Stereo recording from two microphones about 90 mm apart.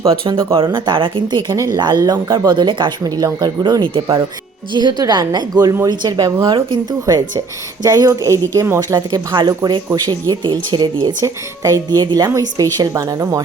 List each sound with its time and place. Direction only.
0.5 s speech: 65° right (ahead or behind)
3.0 s speech: 45° right (ahead or behind)
6.4 s speech: 65° right (ahead or behind)
7.0 s speech: 45° right (ahead or behind)
9.0 s speech: 55° right (ahead or behind)
11.0 s speech: 35° right (ahead or behind)